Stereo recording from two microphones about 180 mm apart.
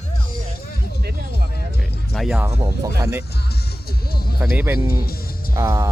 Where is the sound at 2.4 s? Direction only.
15° right (ahead or behind).